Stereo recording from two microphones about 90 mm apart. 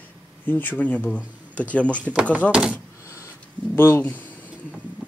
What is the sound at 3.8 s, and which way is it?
Speech, 25° left (ahead or behind).